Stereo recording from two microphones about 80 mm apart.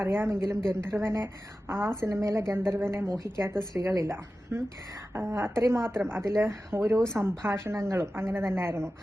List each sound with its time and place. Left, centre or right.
0.0 s a woman's voice: right